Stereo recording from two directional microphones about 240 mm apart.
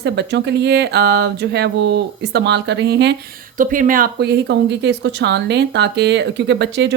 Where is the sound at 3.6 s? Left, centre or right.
Right.